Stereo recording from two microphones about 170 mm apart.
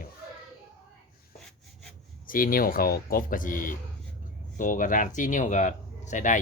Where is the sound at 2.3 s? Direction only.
55° left (ahead or behind).